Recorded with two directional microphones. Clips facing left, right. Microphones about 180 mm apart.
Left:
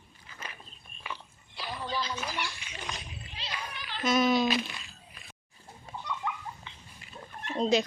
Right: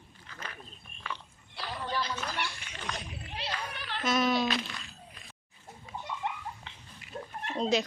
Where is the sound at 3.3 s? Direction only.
60° right (ahead or behind).